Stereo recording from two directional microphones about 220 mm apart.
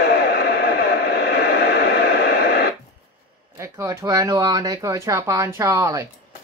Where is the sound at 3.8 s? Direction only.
20° right (ahead or behind).